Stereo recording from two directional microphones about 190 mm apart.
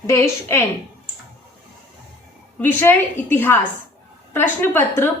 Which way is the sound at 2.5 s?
10° left (ahead or behind).